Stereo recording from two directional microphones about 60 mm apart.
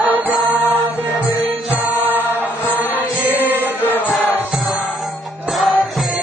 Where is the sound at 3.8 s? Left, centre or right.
Left.